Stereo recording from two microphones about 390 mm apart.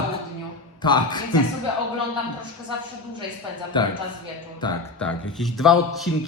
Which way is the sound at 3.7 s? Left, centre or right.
Centre.